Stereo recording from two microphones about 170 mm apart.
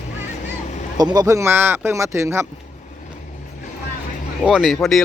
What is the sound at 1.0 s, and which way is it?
Speech, 25° right (ahead or behind).